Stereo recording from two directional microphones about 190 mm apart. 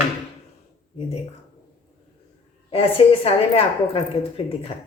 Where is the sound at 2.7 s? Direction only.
30° left (ahead or behind).